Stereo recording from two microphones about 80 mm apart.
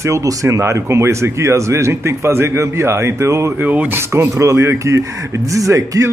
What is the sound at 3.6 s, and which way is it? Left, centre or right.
Speech, right.